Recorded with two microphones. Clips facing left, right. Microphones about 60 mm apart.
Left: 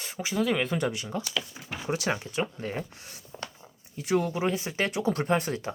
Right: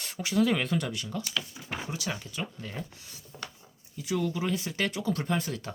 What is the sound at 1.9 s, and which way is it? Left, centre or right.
Speech, left.